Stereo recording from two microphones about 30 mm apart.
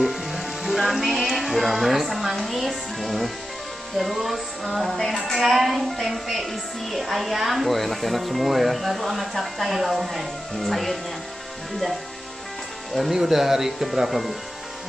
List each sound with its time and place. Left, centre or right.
0.0 s music: centre
3.9 s a woman's voice: centre
4.9 s a sound: centre
5.2 s a woman's voice: centre
13.1 s speech: centre